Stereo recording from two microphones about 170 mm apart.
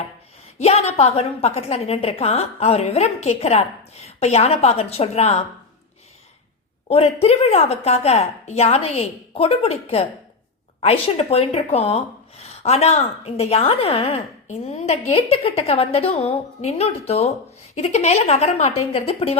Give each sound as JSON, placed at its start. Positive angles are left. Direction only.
{"t": 0.6, "sound": "speech", "side_deg": 40}
{"t": 6.8, "sound": "speech", "side_deg": 35}